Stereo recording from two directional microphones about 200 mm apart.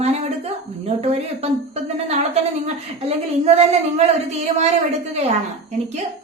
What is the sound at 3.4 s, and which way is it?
Speech, 30° right (ahead or behind).